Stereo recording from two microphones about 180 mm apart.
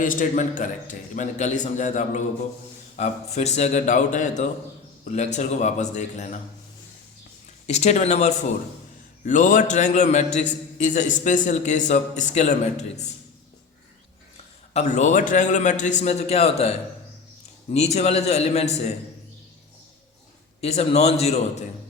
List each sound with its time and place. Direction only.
0.0 s a man's voice: 45° left (ahead or behind)
7.7 s a man's voice: 40° left (ahead or behind)
14.7 s a man's voice: 40° left (ahead or behind)
20.6 s a man's voice: 35° left (ahead or behind)